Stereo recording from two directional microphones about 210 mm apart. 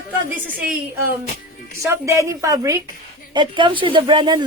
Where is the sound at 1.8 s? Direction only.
15° right (ahead or behind).